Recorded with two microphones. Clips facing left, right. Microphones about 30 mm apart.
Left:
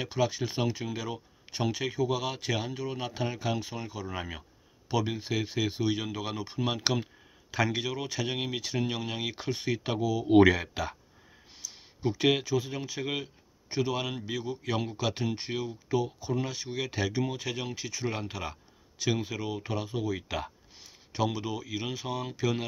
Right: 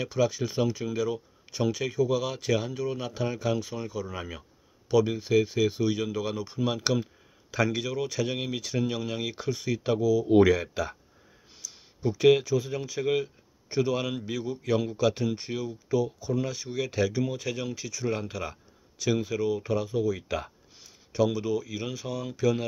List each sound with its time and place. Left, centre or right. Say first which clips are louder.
0.0 s speech: right 3 dB; left
11.6 s a sound: right 1 dB; left
12.3 s speech: right 7 dB; centre